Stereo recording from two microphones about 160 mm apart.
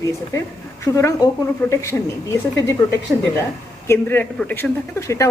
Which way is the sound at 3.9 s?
10° left (ahead or behind).